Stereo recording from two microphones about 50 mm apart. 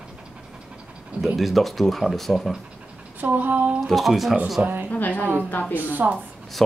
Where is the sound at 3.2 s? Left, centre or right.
Right.